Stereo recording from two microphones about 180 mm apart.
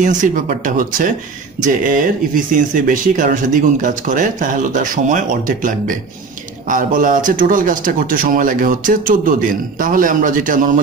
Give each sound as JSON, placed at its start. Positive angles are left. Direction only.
{"t": 0.0, "sound": "speech", "side_deg": -45}